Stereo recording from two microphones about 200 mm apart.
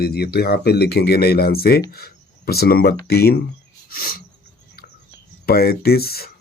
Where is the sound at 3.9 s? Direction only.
45° left (ahead or behind).